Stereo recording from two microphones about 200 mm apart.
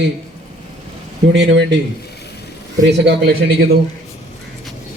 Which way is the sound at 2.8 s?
60° right (ahead or behind).